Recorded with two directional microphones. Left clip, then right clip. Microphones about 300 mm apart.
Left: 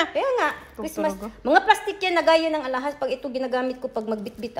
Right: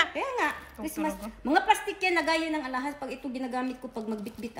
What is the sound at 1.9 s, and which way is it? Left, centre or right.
Speech, left.